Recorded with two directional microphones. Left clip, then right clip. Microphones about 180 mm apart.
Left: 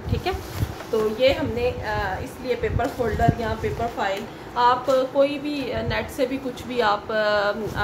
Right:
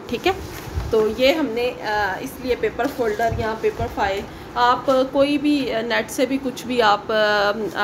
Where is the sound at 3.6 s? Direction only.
40° right (ahead or behind).